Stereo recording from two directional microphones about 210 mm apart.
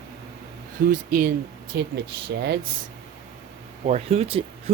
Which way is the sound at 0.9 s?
40° right (ahead or behind).